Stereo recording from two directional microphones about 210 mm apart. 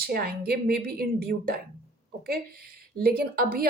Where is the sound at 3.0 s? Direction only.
45° right (ahead or behind).